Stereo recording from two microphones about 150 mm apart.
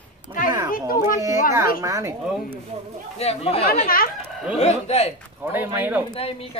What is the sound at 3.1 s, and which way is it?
Speech, 45° left (ahead or behind).